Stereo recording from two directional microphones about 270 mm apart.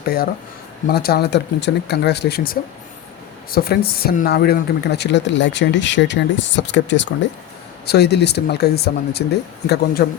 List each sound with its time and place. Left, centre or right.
0.0 s speech: left